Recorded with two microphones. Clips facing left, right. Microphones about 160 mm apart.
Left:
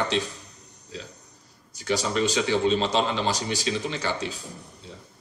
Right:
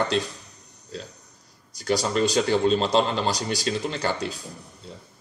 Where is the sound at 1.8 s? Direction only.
40° right (ahead or behind).